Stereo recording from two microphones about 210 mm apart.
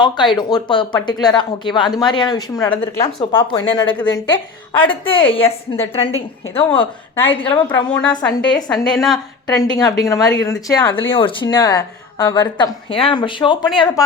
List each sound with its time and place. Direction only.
0.0 s speech: 20° left (ahead or behind)
7.9 s a woman's voice: 5° left (ahead or behind)
8.5 s speech: 20° left (ahead or behind)
8.9 s a woman's voice: centre (ahead or behind)
9.1 s speech: 20° left (ahead or behind)